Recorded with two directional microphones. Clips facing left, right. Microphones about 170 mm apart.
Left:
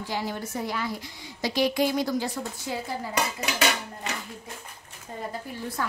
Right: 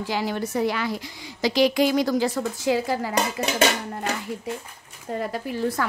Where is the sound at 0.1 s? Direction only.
85° right.